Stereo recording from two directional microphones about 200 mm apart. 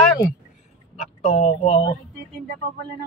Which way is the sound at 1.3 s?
30° left (ahead or behind).